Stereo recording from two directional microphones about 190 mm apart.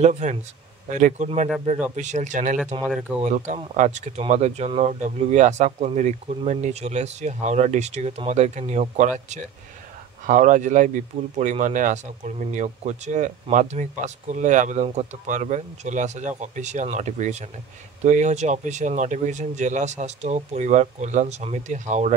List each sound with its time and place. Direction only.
0.0 s a man's voice: 35° right (ahead or behind)
2.7 s a man's voice: 25° right (ahead or behind)
10.2 s a man's voice: 40° right (ahead or behind)